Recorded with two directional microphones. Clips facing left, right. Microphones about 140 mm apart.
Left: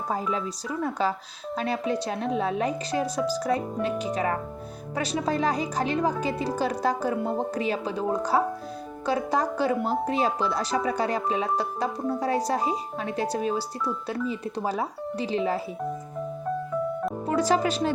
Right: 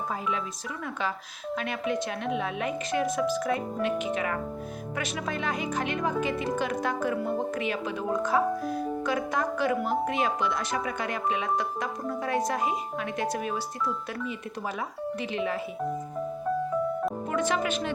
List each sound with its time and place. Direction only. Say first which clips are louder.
0.1 s a woman's voice: left 3 dB; 35° left (ahead or behind)
17.2 s speech: left 6 dB; 35° left (ahead or behind)